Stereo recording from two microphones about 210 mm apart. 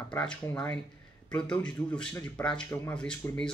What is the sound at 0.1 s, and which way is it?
Speech, 5° left (ahead or behind).